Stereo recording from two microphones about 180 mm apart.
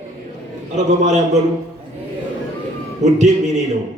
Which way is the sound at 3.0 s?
40° right (ahead or behind).